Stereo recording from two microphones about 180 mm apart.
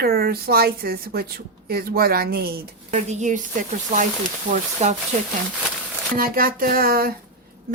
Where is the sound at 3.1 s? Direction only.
40° right (ahead or behind).